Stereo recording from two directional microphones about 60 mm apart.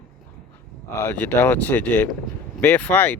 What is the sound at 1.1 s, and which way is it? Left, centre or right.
Speech, left.